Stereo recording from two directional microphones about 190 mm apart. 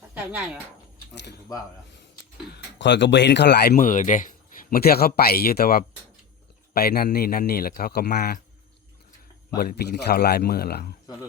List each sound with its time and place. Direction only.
0.1 s speech: 10° right (ahead or behind)
2.7 s speech: 70° left (ahead or behind); by 4.3 s 45° left (ahead or behind)
4.7 s speech: 55° left (ahead or behind)
9.6 s speech: 55° left (ahead or behind)